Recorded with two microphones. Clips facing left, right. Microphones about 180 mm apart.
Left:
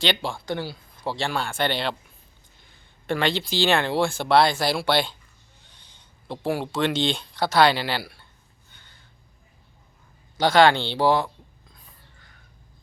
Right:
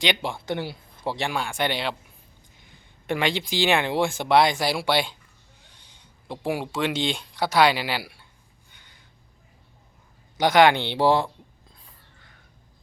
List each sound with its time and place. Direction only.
0.0 s speech: 15° right (ahead or behind)
3.1 s speech: 15° right (ahead or behind)
8.7 s a sound: 15° right (ahead or behind)
10.3 s speech: 15° right (ahead or behind)